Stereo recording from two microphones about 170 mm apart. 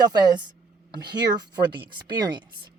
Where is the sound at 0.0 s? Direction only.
25° right (ahead or behind).